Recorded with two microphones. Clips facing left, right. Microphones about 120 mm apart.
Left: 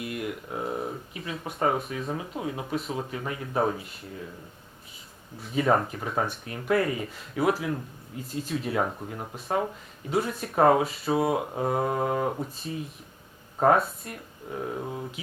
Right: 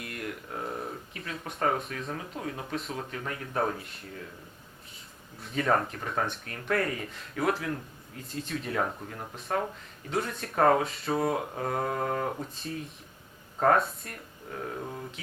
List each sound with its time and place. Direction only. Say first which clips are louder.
0.0 s speech: left 5 dB; 5° left (ahead or behind)
5.4 s speech: left 3 dB; 5° left (ahead or behind)
14.5 s mantra: left 4 dB; 10° left (ahead or behind)